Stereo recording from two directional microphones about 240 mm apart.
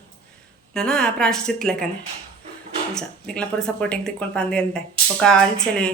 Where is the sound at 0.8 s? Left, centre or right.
Centre.